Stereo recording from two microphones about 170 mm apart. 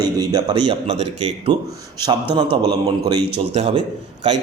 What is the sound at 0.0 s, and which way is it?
Speech, 20° right (ahead or behind).